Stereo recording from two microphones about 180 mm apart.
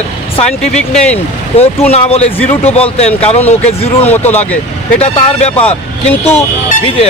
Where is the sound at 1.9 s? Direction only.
35° left (ahead or behind).